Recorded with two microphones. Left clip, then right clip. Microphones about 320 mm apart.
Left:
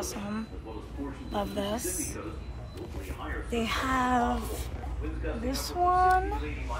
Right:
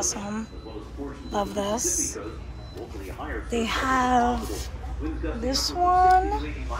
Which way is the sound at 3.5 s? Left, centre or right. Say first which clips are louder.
Right 5 dB; centre.